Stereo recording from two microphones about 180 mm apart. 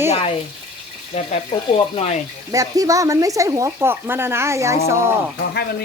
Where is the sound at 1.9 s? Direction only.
35° left (ahead or behind).